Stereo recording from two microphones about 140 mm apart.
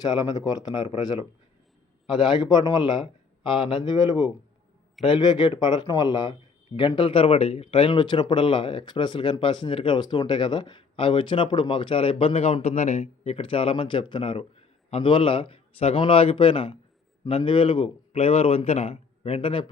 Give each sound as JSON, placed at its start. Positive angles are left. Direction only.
{"t": 0.0, "sound": "a man's voice", "side_deg": 25}